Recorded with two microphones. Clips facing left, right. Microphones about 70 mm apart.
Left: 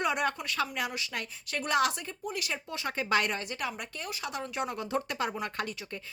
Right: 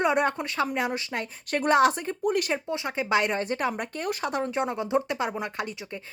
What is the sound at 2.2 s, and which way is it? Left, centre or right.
Speech, right.